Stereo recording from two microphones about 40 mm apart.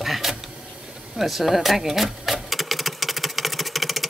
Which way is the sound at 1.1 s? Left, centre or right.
Centre.